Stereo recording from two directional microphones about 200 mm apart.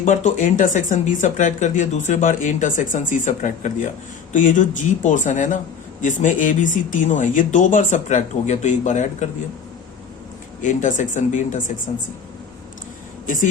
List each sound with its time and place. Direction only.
0.0 s speech: 40° left (ahead or behind)
10.6 s speech: 40° left (ahead or behind)
13.2 s speech: 40° left (ahead or behind)